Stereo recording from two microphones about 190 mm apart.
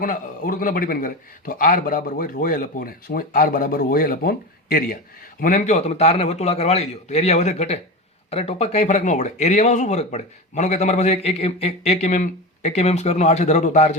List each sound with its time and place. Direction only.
0.0 s a man's voice: 45° left (ahead or behind)